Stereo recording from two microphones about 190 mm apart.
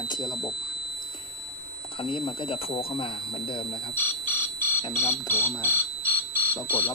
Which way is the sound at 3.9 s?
10° left (ahead or behind).